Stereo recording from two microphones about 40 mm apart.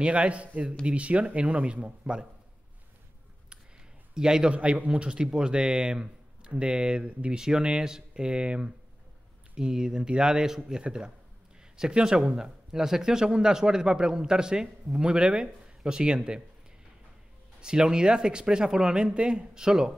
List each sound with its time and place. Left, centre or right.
0.0 s speech: right
4.1 s speech: centre
4.6 s speech: right
6.5 s speech: right
7.3 s speech: centre
9.6 s speech: centre
17.6 s speech: right
19.1 s speech: right
19.6 s speech: centre